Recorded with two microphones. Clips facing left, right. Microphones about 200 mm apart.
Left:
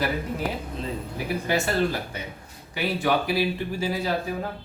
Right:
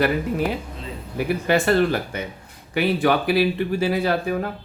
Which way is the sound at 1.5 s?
65° right (ahead or behind).